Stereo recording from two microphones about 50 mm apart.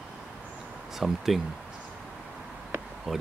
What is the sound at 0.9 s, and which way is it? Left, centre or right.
Speech, centre.